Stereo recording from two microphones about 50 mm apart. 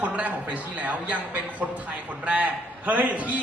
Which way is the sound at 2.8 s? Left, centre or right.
Right.